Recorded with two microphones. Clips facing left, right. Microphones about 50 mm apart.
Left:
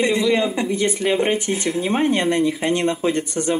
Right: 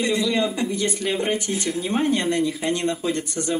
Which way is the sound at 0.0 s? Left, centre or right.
Left.